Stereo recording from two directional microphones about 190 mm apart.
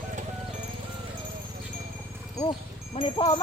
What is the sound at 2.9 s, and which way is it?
Speech, 25° left (ahead or behind).